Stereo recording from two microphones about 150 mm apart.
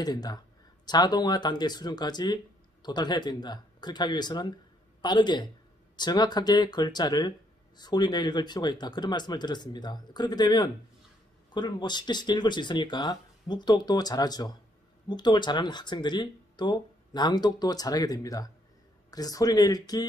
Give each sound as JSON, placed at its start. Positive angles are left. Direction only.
{"t": 0.0, "sound": "speech", "side_deg": 25}